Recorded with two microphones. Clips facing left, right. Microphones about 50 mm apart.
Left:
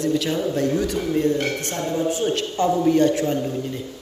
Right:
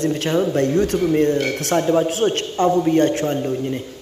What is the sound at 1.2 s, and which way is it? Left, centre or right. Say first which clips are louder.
Speech: right 3 dB; right.